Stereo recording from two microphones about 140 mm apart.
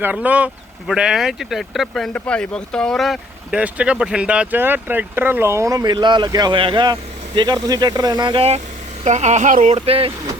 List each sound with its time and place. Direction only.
0.0 s speech: 10° right (ahead or behind); by 8.6 s 45° right (ahead or behind)
9.0 s speech: 55° right (ahead or behind)
9.7 s speech: 45° right (ahead or behind)